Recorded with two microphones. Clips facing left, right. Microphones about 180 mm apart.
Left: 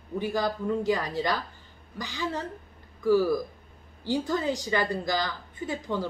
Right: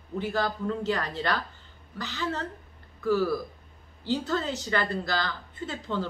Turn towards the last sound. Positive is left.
turn(degrees=10)  # may be behind; listen again after turning